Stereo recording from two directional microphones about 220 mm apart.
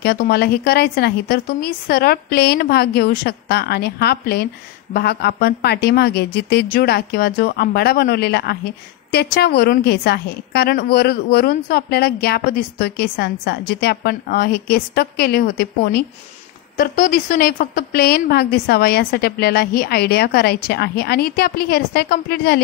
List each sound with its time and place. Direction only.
0.0 s a woman's voice: 45° left (ahead or behind)